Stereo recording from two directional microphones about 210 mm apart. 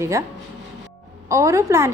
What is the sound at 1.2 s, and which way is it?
Speech, 15° right (ahead or behind).